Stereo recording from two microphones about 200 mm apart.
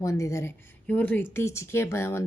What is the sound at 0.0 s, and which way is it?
Speech, 15° left (ahead or behind).